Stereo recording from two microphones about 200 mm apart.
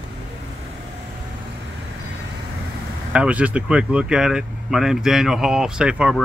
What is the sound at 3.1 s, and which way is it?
Speech, 5° right (ahead or behind).